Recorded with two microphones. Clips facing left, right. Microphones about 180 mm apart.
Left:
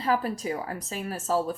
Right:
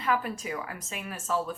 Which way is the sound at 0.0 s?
35° left (ahead or behind).